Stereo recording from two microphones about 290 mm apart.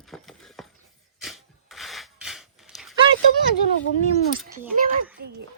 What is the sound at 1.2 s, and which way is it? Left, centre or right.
Dog, centre.